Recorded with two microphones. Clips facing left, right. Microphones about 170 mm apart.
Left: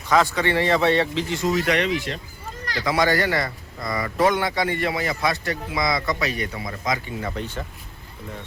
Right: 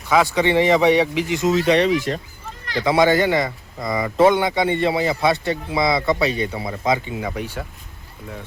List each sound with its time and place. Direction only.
0.1 s speech: 10° right (ahead or behind)